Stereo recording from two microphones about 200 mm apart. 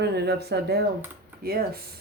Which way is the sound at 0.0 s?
55° right (ahead or behind).